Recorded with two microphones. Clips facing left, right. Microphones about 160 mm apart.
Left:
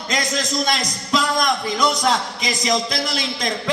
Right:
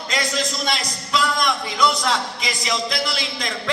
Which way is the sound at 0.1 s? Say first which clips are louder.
Left 2 dB; 40° left (ahead or behind).